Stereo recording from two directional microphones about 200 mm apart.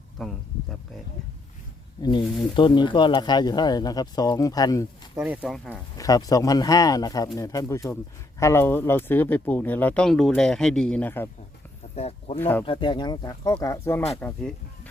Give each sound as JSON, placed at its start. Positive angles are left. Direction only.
{"t": 0.2, "sound": "speech", "side_deg": 0}
{"t": 2.0, "sound": "speech", "side_deg": 25}
{"t": 5.1, "sound": "speech", "side_deg": -5}
{"t": 6.0, "sound": "speech", "side_deg": 15}
{"t": 11.9, "sound": "speech", "side_deg": 30}
{"t": 12.4, "sound": "speech", "side_deg": 10}
{"t": 12.6, "sound": "speech", "side_deg": 25}